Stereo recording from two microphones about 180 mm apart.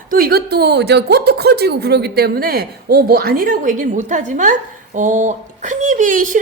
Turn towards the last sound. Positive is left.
turn(degrees=-45)  # may be behind; listen again after turning